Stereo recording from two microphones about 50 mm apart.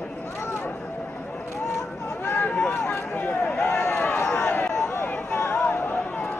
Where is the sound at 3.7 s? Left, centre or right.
Left.